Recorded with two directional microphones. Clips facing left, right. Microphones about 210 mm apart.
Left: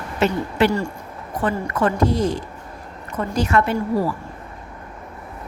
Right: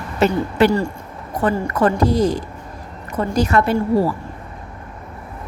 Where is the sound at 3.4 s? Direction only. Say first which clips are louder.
Right 2 dB; 35° right (ahead or behind).